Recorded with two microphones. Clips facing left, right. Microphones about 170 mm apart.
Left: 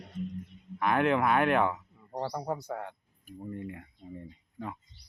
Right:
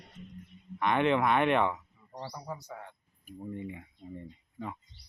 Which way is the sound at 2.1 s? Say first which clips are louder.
Left 7 dB; 65° left (ahead or behind).